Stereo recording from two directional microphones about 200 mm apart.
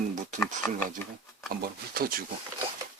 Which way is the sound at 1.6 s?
45° right (ahead or behind).